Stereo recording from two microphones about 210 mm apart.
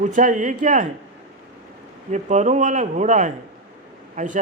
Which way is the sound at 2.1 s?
35° right (ahead or behind).